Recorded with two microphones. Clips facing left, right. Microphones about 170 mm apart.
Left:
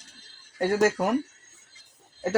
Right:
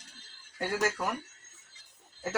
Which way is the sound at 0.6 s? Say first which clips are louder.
Left 8 dB; 45° left (ahead or behind).